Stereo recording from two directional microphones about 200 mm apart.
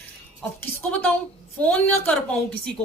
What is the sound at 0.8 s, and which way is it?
A woman's voice, 5° left (ahead or behind).